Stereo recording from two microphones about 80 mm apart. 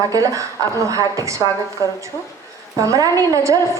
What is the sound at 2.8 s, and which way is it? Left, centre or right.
Speech, right.